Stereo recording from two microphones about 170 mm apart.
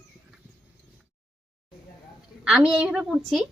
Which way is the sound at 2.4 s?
5° right (ahead or behind).